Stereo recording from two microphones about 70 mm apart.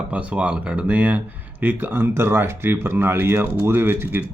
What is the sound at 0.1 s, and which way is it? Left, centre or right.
Speech, centre.